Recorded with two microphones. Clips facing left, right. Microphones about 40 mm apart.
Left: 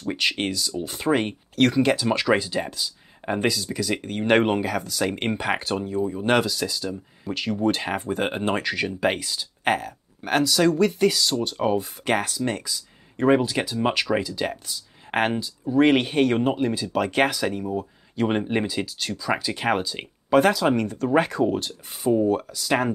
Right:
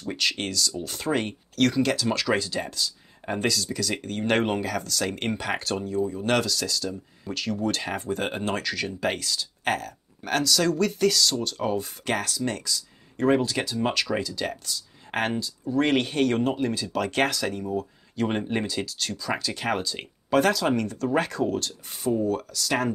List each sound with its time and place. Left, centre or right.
0.1 s speech: left